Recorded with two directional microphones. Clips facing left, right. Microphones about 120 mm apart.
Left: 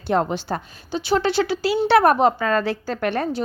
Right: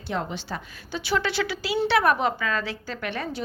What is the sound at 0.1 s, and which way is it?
Speech, 50° left (ahead or behind).